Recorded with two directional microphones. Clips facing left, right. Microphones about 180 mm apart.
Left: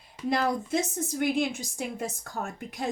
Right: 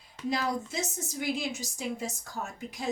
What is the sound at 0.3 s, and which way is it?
A woman's voice, 55° left (ahead or behind).